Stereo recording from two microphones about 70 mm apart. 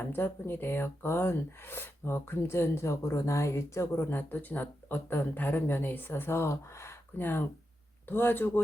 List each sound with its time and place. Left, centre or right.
0.0 s speech: left